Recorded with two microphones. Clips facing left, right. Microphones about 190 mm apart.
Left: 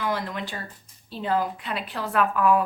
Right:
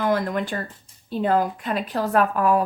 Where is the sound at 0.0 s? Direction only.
50° right (ahead or behind).